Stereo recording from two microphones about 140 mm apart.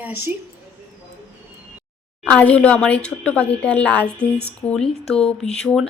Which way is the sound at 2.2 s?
10° left (ahead or behind).